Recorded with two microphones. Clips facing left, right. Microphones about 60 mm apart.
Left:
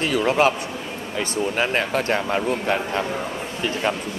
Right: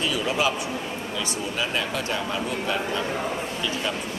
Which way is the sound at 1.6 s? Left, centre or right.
Left.